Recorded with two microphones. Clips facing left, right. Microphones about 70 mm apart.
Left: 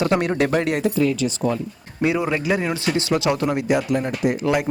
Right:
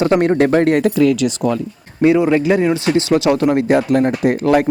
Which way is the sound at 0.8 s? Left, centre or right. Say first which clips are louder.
Right 6 dB; right.